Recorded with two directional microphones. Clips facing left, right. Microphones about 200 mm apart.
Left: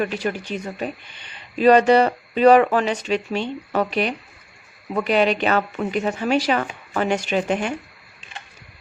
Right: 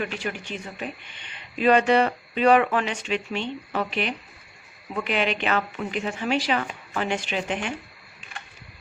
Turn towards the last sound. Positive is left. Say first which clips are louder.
# left 6 dB
turn(degrees=40)  # may be behind; listen again after turning